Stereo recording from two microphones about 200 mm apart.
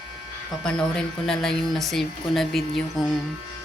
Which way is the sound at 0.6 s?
5° left (ahead or behind).